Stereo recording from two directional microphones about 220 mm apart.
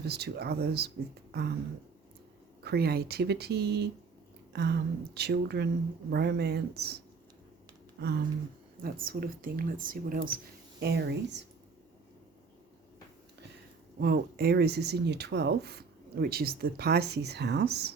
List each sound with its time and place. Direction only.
0.0 s speech: 50° right (ahead or behind)
1.3 s a sound: 50° right (ahead or behind)
2.6 s speech: 45° right (ahead or behind)
8.0 s speech: 50° right (ahead or behind)
14.0 s speech: 40° right (ahead or behind)